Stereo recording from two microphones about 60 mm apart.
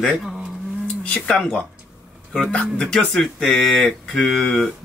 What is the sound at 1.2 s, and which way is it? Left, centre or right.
Speech, centre.